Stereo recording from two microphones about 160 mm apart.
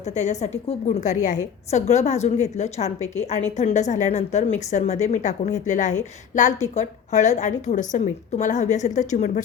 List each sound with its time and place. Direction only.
0.1 s a woman's voice: 45° left (ahead or behind)